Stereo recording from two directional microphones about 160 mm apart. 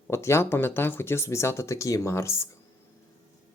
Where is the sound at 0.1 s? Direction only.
15° left (ahead or behind).